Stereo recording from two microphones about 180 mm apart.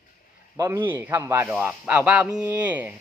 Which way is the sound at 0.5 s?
20° right (ahead or behind).